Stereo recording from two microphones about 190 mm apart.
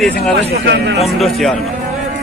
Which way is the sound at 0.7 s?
60° right (ahead or behind).